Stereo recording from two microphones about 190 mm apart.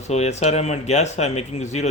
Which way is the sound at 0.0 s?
35° left (ahead or behind).